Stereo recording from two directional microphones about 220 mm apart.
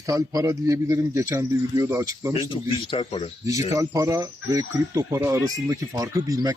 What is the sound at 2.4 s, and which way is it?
Speech, 20° left (ahead or behind).